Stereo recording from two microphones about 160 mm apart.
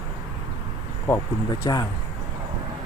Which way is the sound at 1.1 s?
20° left (ahead or behind).